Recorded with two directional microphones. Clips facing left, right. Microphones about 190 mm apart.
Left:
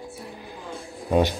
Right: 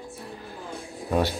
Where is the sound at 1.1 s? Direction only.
20° left (ahead or behind).